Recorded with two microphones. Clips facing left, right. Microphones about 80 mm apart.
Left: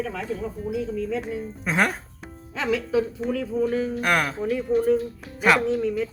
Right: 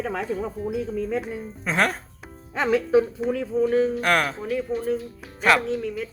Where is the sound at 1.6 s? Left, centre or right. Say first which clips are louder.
Even; centre.